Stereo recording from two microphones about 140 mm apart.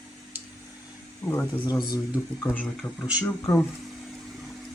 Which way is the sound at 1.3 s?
10° left (ahead or behind).